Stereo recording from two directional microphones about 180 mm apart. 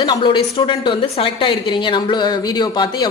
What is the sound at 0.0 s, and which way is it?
A woman's voice, 25° left (ahead or behind).